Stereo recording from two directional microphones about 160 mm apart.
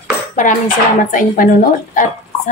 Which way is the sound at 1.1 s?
55° left (ahead or behind).